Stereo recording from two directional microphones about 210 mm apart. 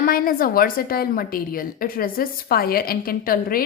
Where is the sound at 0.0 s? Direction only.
45° left (ahead or behind).